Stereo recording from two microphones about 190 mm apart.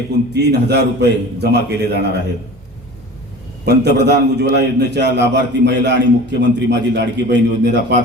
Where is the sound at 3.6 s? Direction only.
60° right (ahead or behind).